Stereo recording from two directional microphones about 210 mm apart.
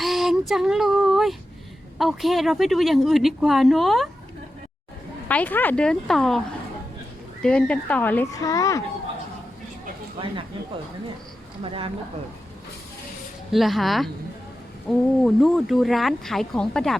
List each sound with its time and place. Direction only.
0.0 s a sound: centre (ahead or behind)
2.0 s speech: centre (ahead or behind)
5.3 s speech: 10° left (ahead or behind)
7.4 s speech: 5° left (ahead or behind)
11.6 s speech: 25° right (ahead or behind)
13.5 s speech: centre (ahead or behind)